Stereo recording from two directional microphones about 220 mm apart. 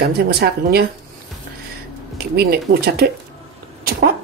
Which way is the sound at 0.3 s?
45° right (ahead or behind).